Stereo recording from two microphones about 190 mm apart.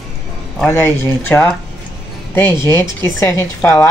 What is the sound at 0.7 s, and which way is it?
Speech, 10° left (ahead or behind).